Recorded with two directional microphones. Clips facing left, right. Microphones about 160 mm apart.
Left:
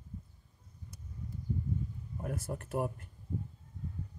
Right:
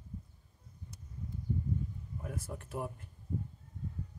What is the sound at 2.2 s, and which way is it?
Speech, 50° left (ahead or behind).